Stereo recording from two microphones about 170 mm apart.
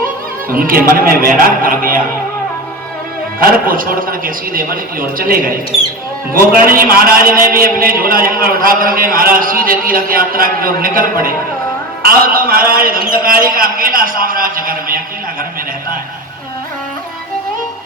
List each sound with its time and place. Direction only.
0.5 s a man's voice: 60° right (ahead or behind)
3.4 s a man's voice: 55° right (ahead or behind)